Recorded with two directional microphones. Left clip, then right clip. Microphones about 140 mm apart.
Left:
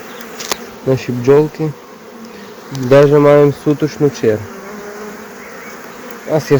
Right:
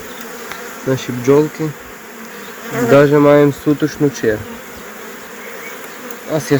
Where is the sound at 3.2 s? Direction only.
5° left (ahead or behind).